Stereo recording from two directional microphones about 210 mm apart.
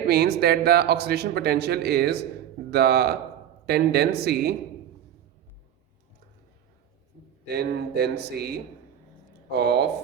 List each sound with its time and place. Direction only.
0.1 s a man's voice: 45° right (ahead or behind)
7.4 s a man's voice: 50° right (ahead or behind)